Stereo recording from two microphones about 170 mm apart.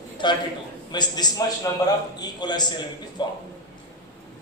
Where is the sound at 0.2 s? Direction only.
25° left (ahead or behind).